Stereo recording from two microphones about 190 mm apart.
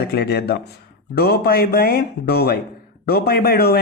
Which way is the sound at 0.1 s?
55° left (ahead or behind).